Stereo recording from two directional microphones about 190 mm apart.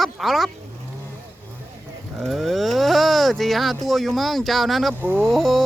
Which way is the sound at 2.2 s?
Centre (ahead or behind).